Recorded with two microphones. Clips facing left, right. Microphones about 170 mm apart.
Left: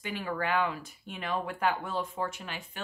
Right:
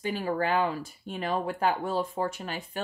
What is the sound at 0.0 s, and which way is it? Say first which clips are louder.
Speech: right 5 dB; 35° right (ahead or behind).